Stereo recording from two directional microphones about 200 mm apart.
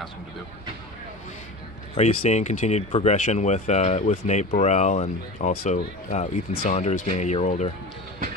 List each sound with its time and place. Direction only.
2.0 s speech: 35° left (ahead or behind)